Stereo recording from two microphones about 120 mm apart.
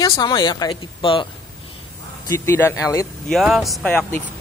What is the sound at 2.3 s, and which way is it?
Speech, 20° left (ahead or behind).